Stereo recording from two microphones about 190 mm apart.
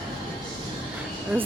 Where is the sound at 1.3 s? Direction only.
10° right (ahead or behind).